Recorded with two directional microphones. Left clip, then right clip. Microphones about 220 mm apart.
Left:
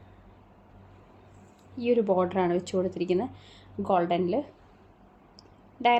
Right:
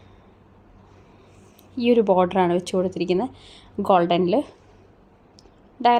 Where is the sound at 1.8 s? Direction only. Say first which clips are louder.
Right 7 dB; 40° right (ahead or behind).